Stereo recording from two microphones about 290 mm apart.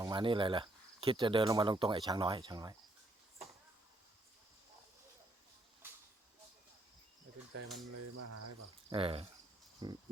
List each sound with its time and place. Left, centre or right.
0.0 s speech: centre
7.9 s cricket: right
8.9 s speech: centre